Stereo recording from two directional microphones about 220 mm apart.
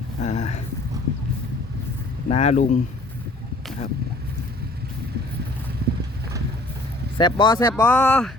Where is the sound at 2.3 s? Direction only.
30° left (ahead or behind).